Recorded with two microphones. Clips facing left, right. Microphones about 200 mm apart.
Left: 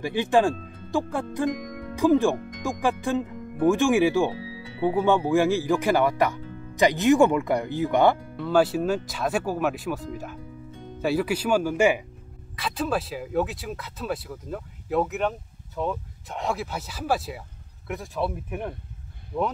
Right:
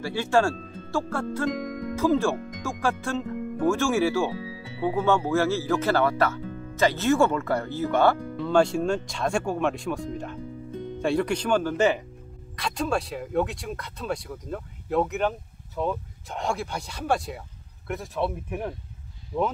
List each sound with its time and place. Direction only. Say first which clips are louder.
0.0 s speech: left 2 dB; 15° left (ahead or behind)
8.5 s speech: even; 5° left (ahead or behind)